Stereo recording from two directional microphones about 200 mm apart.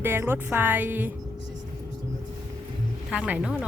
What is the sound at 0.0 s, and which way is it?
Speech, 10° right (ahead or behind).